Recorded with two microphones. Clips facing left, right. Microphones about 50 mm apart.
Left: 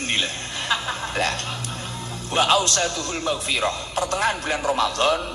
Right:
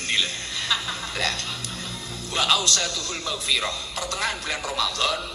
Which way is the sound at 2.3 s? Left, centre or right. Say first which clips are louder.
Left 4 dB; left.